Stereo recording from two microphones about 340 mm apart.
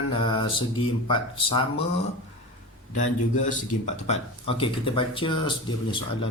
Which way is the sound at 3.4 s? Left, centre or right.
Left.